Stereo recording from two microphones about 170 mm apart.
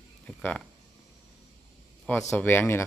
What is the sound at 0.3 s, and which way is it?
Speech, 5° left (ahead or behind).